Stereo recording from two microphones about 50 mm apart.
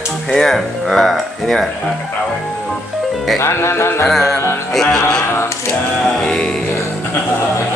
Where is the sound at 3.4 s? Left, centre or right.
Left.